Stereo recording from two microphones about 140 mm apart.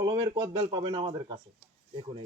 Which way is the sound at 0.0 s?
30° right (ahead or behind).